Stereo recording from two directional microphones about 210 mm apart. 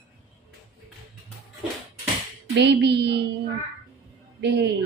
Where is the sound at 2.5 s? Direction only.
55° right (ahead or behind).